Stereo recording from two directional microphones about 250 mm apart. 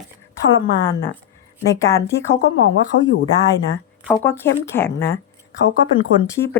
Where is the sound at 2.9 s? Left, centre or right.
Left.